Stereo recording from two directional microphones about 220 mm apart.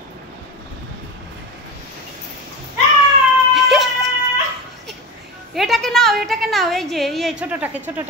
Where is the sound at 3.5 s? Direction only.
Centre (ahead or behind).